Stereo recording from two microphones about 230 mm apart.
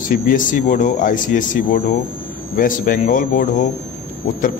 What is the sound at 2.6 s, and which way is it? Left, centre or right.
Speech, left.